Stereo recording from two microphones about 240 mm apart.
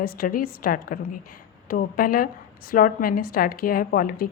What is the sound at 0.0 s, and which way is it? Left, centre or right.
A woman's voice, left.